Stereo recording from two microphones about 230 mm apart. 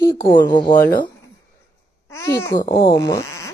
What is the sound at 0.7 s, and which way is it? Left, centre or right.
Speech, left.